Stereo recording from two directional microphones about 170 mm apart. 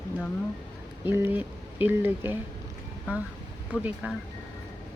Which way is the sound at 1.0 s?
10° right (ahead or behind).